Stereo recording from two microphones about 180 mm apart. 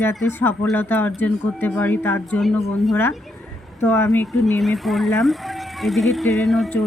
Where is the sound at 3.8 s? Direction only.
10° left (ahead or behind).